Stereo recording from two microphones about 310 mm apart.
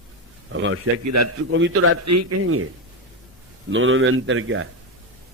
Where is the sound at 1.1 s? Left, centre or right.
Right.